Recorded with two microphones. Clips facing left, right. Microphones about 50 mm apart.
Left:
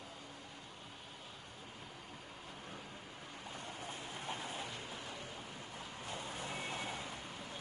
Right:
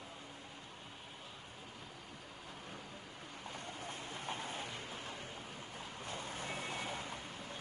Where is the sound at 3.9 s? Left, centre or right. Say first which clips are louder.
Right 1 dB; right.